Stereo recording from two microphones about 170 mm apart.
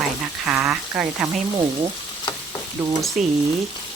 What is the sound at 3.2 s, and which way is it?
Speech, 45° right (ahead or behind).